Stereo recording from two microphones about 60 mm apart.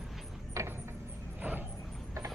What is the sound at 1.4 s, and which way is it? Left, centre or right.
Vehicle, right.